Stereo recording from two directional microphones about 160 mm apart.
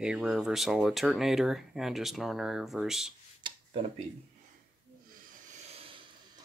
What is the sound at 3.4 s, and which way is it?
Tick-tock, 35° right (ahead or behind).